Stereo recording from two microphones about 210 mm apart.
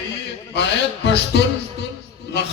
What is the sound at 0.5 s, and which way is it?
A man's voice, 55° left (ahead or behind).